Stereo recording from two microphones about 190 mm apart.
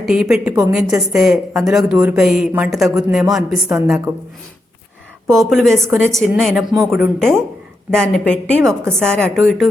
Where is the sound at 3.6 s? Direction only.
15° right (ahead or behind).